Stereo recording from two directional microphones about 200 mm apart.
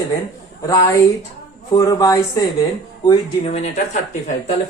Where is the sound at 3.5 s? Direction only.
35° left (ahead or behind).